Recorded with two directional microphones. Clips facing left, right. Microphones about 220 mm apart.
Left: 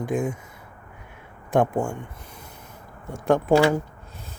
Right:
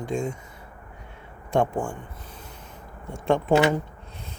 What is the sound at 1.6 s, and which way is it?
Speech, 10° left (ahead or behind).